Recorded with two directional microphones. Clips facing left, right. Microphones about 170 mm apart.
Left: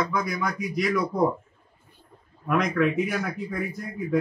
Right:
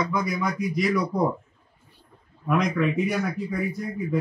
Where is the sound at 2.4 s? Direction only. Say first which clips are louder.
Even; centre (ahead or behind).